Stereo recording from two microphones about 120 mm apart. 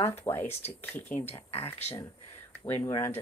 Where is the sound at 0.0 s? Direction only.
20° left (ahead or behind).